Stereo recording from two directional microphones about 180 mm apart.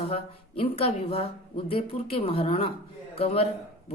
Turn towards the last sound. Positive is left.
turn(degrees=35)  # may be behind; listen again after turning